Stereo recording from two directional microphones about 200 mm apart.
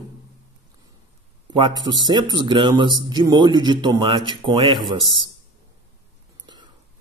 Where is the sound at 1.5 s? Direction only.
20° right (ahead or behind).